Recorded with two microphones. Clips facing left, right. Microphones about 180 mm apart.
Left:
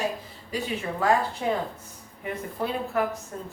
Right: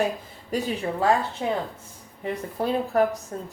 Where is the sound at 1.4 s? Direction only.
25° right (ahead or behind).